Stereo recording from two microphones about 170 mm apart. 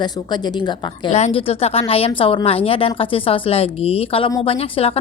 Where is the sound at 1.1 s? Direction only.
35° left (ahead or behind).